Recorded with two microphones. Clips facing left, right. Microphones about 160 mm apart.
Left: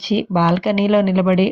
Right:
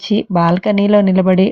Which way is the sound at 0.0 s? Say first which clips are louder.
Right 3 dB; 45° right (ahead or behind).